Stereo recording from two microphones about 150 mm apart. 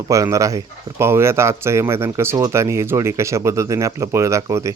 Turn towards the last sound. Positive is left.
turn(degrees=-20)  # may be behind; listen again after turning